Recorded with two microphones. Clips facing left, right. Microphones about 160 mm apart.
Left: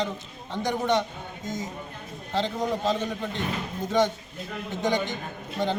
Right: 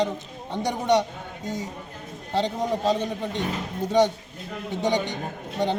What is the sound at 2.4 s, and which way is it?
Speech, 15° right (ahead or behind).